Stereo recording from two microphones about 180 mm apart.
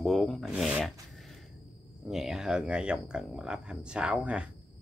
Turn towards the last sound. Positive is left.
turn(degrees=-5)  # may be behind; listen again after turning